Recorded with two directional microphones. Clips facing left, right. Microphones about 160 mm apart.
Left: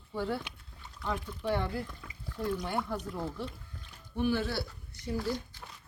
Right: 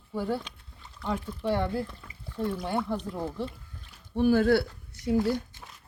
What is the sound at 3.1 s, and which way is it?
Speech, 20° right (ahead or behind).